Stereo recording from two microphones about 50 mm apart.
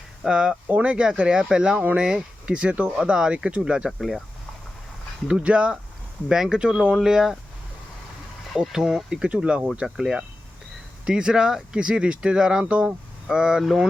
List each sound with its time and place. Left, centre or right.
0.3 s speech: centre
3.9 s speech: centre
5.4 s speech: right
6.2 s speech: centre
8.5 s speech: centre
9.8 s speech: centre; by 12.9 s right
13.2 s speech: centre